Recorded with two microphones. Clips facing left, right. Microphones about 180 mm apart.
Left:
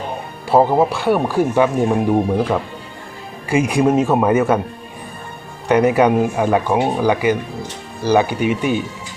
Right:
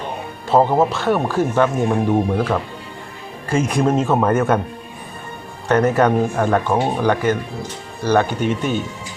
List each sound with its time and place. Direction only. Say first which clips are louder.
0.4 s speech: left 1 dB; 10° left (ahead or behind)
5.6 s speech: left 2 dB; 10° left (ahead or behind)